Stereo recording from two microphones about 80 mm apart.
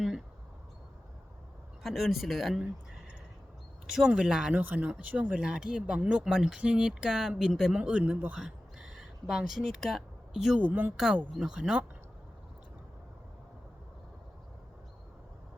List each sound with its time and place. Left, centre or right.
1.8 s speech: centre
3.8 s speech: centre
8.4 s a sound: centre
10.6 s speech: right
10.9 s speech: centre